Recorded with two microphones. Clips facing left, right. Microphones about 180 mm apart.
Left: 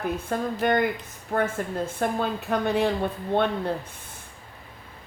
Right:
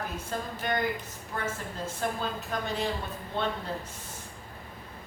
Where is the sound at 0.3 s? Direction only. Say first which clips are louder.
Left 8 dB; 55° left (ahead or behind).